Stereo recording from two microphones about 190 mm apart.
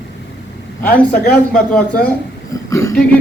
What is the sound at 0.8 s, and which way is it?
Speech, 50° left (ahead or behind).